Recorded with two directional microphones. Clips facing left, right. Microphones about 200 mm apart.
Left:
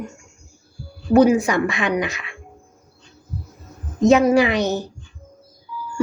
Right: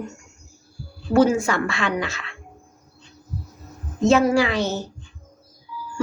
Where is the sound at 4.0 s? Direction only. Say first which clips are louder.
Left 3 dB; 15° left (ahead or behind).